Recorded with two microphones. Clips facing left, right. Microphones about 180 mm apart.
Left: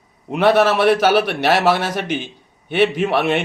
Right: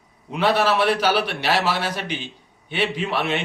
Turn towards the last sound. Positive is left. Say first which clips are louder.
# left 6 dB
turn(degrees=50)  # may be behind; listen again after turning